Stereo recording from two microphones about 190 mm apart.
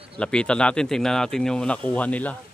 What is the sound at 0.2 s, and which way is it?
Speech, 5° left (ahead or behind).